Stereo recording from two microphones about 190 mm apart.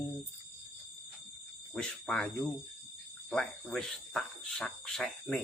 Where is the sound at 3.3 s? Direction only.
5° left (ahead or behind).